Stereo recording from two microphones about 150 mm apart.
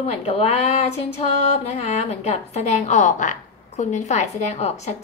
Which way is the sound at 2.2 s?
50° left (ahead or behind).